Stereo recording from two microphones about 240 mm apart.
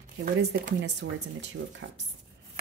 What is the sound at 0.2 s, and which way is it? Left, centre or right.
Speech, right.